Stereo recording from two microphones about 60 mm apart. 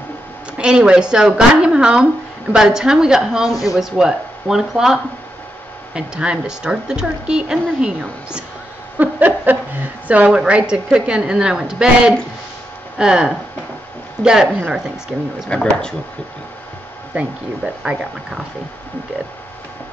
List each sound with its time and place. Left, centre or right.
0.6 s speech: centre
5.9 s speech: centre
8.9 s a sound: right
10.0 s speech: right
15.5 s speech: centre
17.1 s speech: right